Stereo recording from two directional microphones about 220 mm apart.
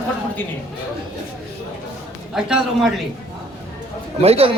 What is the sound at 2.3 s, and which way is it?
Speech, centre (ahead or behind).